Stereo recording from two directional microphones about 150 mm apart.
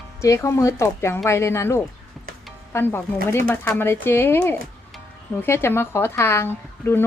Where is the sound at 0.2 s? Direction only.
20° left (ahead or behind).